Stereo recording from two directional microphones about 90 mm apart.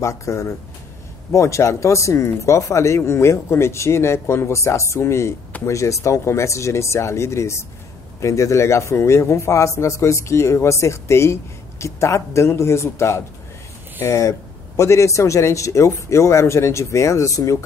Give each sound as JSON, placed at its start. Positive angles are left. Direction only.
{"t": 0.0, "sound": "speech", "side_deg": 35}